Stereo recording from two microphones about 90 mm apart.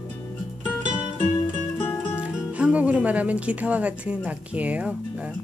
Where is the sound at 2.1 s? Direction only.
15° right (ahead or behind).